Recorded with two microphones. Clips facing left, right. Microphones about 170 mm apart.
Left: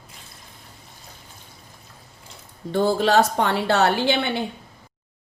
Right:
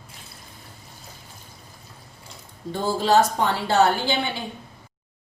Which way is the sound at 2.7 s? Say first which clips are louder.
Left 2 dB; 65° left (ahead or behind).